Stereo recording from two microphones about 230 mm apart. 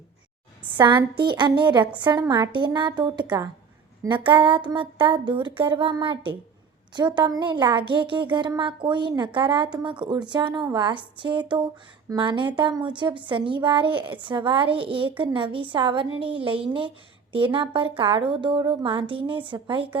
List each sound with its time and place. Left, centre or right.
0.7 s a woman's voice: centre